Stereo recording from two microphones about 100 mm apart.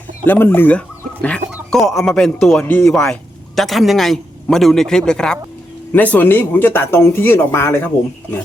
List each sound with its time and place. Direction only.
0.3 s speech: 20° left (ahead or behind)
1.7 s a man's voice: centre (ahead or behind); by 7.9 s 25° left (ahead or behind)